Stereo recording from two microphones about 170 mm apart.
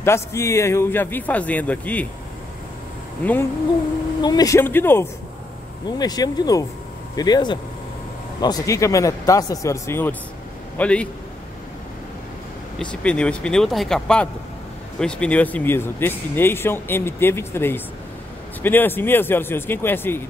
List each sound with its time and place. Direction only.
0.0 s speech: 15° left (ahead or behind)
3.2 s speech: 10° left (ahead or behind)
4.2 s speech: 25° left (ahead or behind)
5.9 s a man's voice: 25° left (ahead or behind); by 11.1 s 5° left (ahead or behind)
13.0 s speech: 5° left (ahead or behind)